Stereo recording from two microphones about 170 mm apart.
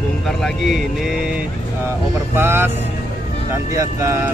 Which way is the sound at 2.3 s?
15° right (ahead or behind).